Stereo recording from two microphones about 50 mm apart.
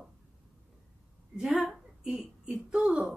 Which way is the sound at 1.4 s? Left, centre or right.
Centre.